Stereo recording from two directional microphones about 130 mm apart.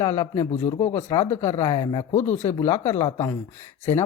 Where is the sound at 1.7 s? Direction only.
35° left (ahead or behind).